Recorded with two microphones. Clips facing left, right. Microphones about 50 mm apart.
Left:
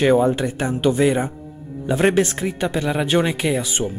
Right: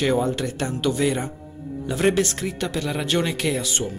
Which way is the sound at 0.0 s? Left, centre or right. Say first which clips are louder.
Left 6 dB; left.